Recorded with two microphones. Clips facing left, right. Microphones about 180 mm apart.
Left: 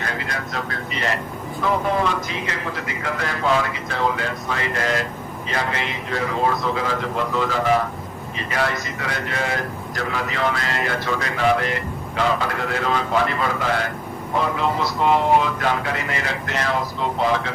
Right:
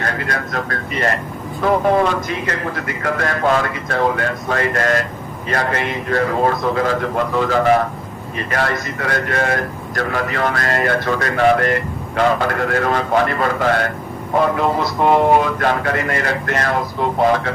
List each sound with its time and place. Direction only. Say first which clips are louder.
0.0 s a man's voice: right 5 dB; 55° right (ahead or behind)